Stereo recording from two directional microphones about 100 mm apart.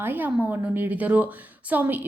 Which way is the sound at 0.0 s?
20° right (ahead or behind).